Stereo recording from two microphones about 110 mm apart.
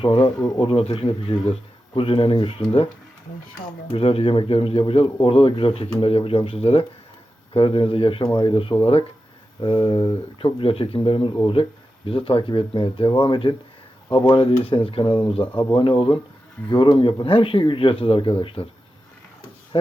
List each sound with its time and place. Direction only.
0.0 s speech: 50° left (ahead or behind)
3.9 s speech: 60° left (ahead or behind)
19.7 s speech: 50° left (ahead or behind)